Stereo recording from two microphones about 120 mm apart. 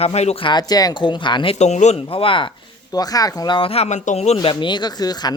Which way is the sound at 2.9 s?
30° left (ahead or behind).